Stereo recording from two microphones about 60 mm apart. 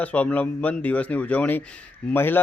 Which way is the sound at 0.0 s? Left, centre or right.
Left.